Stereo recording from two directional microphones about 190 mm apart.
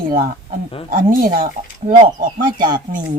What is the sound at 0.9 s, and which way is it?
Speech, 50° right (ahead or behind).